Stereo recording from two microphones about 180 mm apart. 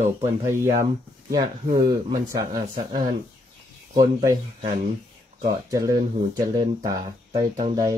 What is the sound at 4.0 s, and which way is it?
Speech, 20° right (ahead or behind).